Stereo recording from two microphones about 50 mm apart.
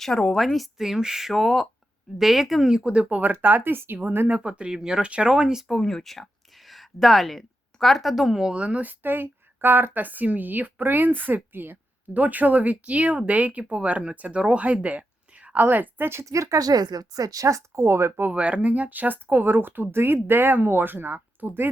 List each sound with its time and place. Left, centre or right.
0.0 s speech: centre
0.5 s speech: centre; by 3.9 s right
4.3 s speech: right
5.6 s speech: centre
8.4 s speech: centre
8.6 s speech: right
12.1 s a woman's voice: right
15.6 s speech: right
16.0 s speech: right
18.2 s speech: right